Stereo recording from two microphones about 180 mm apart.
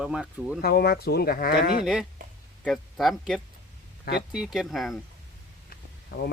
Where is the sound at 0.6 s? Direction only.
60° left (ahead or behind).